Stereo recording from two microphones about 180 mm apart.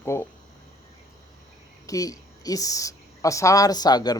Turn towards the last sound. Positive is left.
turn(degrees=20)  # may be behind; listen again after turning